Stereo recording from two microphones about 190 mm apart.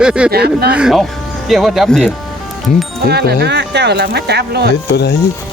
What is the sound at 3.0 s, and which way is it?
Speech, 60° right (ahead or behind).